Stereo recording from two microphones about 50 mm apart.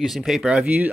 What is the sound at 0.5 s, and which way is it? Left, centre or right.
Speech, right.